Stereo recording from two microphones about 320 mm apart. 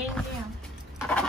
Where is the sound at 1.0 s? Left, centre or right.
Centre.